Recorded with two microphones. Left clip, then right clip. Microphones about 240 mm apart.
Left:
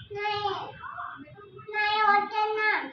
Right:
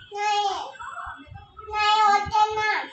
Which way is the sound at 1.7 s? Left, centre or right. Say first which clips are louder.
Right 4 dB; centre.